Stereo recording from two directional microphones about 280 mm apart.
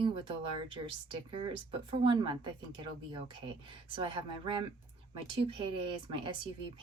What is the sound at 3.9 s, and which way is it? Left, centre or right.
Speech, centre.